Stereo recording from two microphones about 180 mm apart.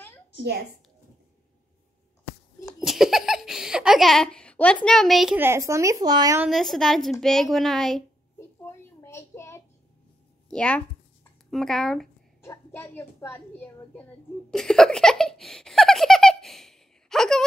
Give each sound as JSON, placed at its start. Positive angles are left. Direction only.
{"t": 2.8, "sound": "a woman's voice", "side_deg": 0}
{"t": 5.4, "sound": "speech", "side_deg": -15}
{"t": 6.4, "sound": "a woman's voice", "side_deg": 0}
{"t": 8.4, "sound": "child singing", "side_deg": 15}
{"t": 10.5, "sound": "a woman's voice", "side_deg": 5}
{"t": 12.4, "sound": "a woman's voice", "side_deg": 15}
{"t": 14.5, "sound": "giggle", "side_deg": 5}